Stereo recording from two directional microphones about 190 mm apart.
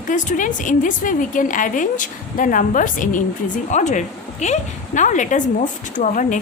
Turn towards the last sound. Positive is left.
turn(degrees=40)  # may be behind; listen again after turning